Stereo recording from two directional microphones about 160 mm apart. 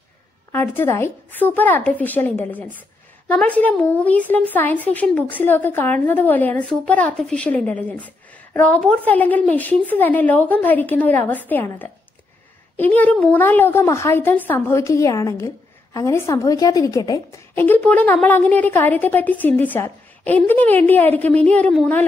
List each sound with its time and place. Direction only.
0.5 s a woman's voice: 15° left (ahead or behind)